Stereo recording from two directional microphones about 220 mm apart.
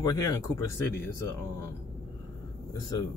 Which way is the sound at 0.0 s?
15° left (ahead or behind).